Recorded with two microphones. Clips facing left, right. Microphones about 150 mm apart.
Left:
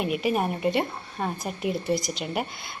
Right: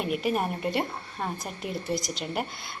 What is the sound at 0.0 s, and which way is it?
A woman's voice, 5° left (ahead or behind).